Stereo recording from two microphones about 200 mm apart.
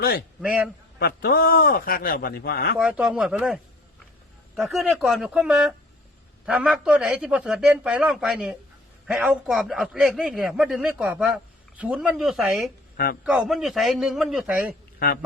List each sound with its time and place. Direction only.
0.0 s a man's voice: 50° left (ahead or behind)
0.4 s a man's voice: 5° right (ahead or behind)
0.9 s a man's voice: 50° left (ahead or behind)
2.7 s a man's voice: 5° right (ahead or behind)
14.9 s a man's voice: 50° left (ahead or behind)